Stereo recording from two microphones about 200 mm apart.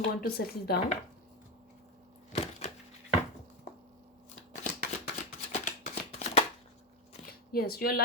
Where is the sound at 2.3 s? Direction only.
35° left (ahead or behind).